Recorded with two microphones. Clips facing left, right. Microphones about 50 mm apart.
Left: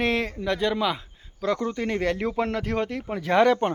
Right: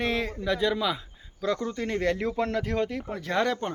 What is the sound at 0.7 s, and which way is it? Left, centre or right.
Speech, left.